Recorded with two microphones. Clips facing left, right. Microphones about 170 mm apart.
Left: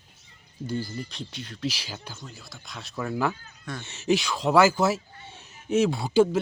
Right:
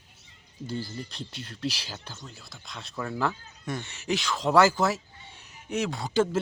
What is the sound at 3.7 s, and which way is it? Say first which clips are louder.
Speech: right 3 dB; 20° right (ahead or behind).